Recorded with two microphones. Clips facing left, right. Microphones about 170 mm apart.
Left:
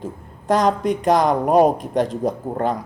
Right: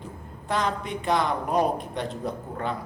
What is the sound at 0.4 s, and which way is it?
A man's voice, 40° left (ahead or behind).